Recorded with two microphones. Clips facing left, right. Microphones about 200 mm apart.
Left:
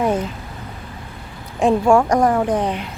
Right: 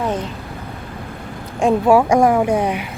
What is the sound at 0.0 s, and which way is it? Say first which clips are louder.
Vehicle: left 3 dB; 10° left (ahead or behind).